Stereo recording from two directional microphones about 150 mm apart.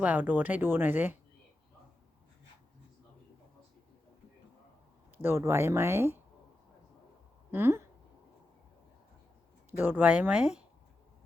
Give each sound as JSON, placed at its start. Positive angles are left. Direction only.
{"t": 0.0, "sound": "speech", "side_deg": -10}
{"t": 5.1, "sound": "speech", "side_deg": -15}
{"t": 7.5, "sound": "speech", "side_deg": -15}
{"t": 9.7, "sound": "speech", "side_deg": -10}